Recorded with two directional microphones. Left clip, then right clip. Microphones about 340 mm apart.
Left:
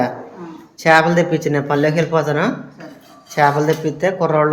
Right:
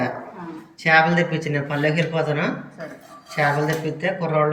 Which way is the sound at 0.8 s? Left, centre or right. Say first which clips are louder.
Left 4 dB; centre.